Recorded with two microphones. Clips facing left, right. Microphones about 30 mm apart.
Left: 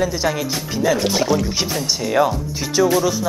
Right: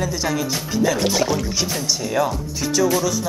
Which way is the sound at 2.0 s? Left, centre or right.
Centre.